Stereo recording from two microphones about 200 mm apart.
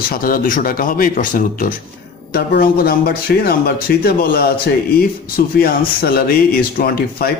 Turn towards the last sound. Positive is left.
turn(degrees=50)  # may be behind; listen again after turning